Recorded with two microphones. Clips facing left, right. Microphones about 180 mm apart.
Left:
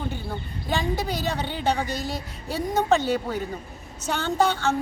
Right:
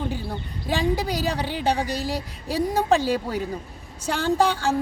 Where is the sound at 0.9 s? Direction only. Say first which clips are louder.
Right 2 dB; 10° right (ahead or behind).